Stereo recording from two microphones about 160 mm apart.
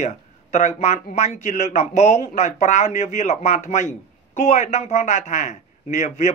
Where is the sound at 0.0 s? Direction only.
50° left (ahead or behind).